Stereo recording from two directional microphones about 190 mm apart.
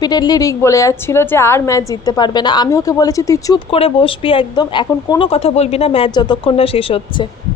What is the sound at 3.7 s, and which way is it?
A woman's voice, 30° left (ahead or behind).